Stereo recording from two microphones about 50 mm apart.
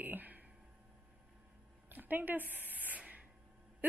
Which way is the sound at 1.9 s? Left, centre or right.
Right.